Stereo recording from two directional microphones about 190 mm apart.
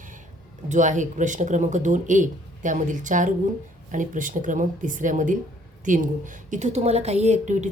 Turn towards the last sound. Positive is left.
turn(degrees=-40)  # may be behind; listen again after turning